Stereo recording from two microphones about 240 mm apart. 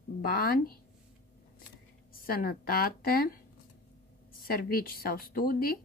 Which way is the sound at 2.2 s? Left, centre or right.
Left.